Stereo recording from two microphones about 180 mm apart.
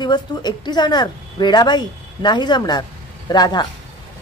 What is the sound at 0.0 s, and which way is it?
Speech, 25° left (ahead or behind).